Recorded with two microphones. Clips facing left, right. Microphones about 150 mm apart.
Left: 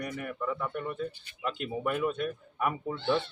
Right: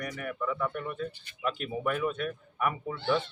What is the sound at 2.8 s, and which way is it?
Speech, 10° right (ahead or behind).